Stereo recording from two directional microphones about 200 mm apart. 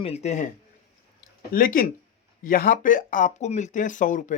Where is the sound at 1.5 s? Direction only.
45° left (ahead or behind).